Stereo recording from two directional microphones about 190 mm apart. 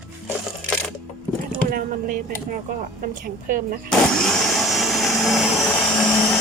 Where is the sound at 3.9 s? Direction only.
5° left (ahead or behind).